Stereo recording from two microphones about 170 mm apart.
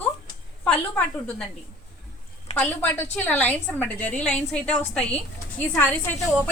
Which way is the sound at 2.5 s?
10° left (ahead or behind).